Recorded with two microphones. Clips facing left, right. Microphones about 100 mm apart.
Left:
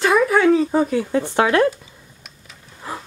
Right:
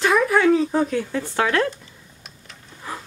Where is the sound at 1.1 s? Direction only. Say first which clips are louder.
Left 6 dB; 20° left (ahead or behind).